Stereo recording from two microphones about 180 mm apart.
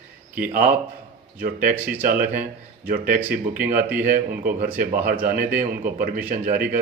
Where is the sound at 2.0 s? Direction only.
50° right (ahead or behind).